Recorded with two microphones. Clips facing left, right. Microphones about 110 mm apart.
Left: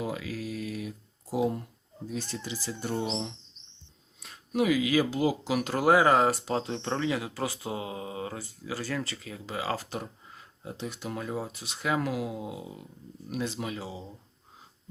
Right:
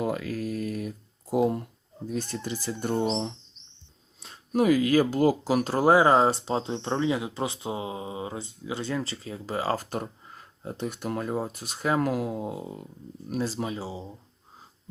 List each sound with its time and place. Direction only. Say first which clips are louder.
0.0 s a sound: right 5 dB; 50° right (ahead or behind)
2.0 s speech: right 4 dB; 50° right (ahead or behind)
2.9 s speech: right 5 dB; 35° right (ahead or behind)
4.2 s a sound: right 4 dB; 30° right (ahead or behind)
4.6 s speech: right 4 dB; 45° right (ahead or behind)
13.3 s speech: right 3 dB; 35° right (ahead or behind)